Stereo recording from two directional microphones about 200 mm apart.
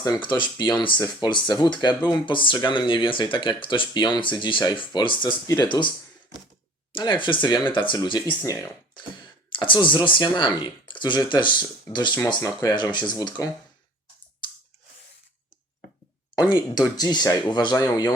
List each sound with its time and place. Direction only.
0.0 s speech: 25° left (ahead or behind)
6.9 s speech: 25° left (ahead or behind)
8.4 s speech: 10° left (ahead or behind)
14.4 s a sound: 25° left (ahead or behind)
16.3 s speech: 20° left (ahead or behind)